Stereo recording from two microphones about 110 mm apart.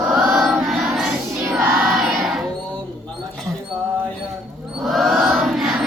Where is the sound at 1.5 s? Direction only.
20° right (ahead or behind).